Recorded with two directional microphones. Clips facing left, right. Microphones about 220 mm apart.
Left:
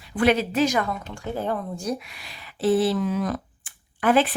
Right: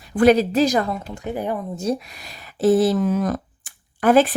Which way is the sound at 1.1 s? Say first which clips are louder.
Right 1 dB; 15° right (ahead or behind).